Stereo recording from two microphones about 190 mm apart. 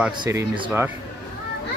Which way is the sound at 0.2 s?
20° right (ahead or behind).